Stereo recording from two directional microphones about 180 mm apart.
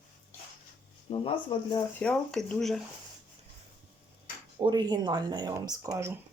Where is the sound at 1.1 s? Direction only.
35° left (ahead or behind).